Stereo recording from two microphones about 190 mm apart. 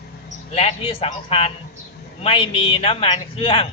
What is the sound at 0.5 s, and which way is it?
Speech, 30° left (ahead or behind).